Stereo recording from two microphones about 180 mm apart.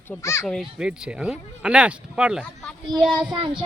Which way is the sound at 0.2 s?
15° left (ahead or behind).